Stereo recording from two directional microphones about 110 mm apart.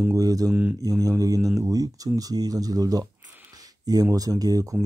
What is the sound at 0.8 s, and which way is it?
Speech, 35° right (ahead or behind).